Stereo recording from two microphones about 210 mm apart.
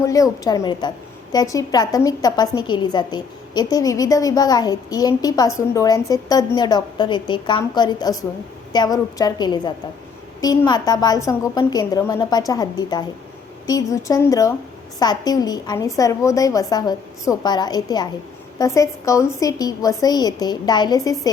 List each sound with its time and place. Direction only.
0.0 s a woman's voice: 15° left (ahead or behind)